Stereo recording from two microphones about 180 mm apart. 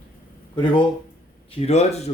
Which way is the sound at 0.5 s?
30° left (ahead or behind).